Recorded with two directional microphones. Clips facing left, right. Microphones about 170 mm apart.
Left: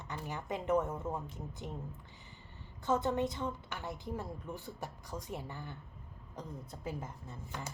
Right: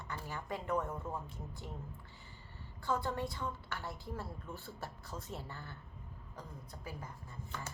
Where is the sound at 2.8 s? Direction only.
20° left (ahead or behind).